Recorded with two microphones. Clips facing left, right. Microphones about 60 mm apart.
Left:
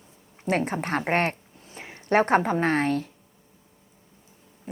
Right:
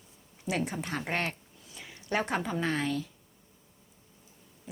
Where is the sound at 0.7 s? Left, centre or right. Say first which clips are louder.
Left 8 dB; left.